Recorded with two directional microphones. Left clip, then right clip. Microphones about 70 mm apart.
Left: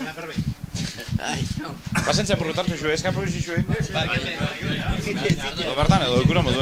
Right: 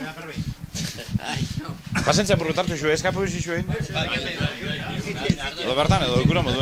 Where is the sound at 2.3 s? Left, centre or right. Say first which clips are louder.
Right 2 dB; right.